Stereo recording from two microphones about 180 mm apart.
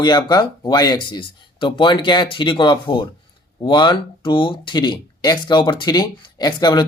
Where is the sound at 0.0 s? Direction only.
25° left (ahead or behind).